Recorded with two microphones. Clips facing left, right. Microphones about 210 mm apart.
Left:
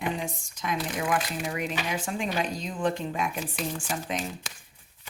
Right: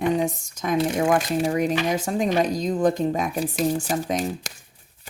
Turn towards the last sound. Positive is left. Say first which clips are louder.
# right 7 dB
turn(degrees=-35)  # may be behind; listen again after turning